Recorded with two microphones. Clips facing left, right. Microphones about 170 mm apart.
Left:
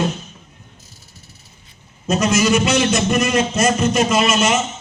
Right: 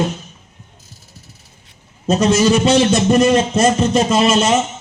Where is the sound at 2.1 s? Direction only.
30° right (ahead or behind).